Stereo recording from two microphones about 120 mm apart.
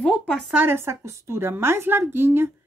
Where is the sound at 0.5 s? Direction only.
15° right (ahead or behind).